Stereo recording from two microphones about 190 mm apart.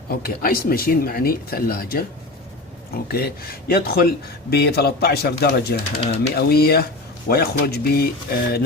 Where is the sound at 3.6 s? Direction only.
55° left (ahead or behind).